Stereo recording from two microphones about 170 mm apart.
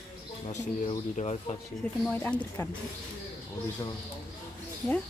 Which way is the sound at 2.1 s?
10° left (ahead or behind).